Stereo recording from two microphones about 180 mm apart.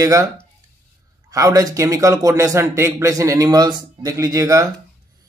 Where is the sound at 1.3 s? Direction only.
20° right (ahead or behind).